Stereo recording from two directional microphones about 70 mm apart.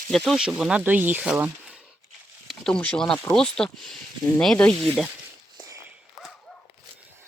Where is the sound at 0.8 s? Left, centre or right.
Right.